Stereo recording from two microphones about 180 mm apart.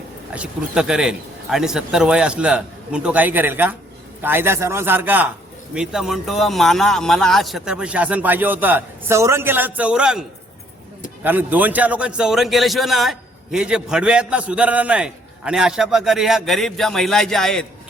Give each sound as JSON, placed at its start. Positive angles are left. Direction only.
{"t": 0.3, "sound": "a man's voice", "side_deg": -5}